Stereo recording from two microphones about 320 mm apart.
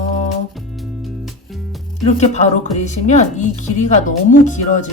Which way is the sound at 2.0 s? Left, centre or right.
Left.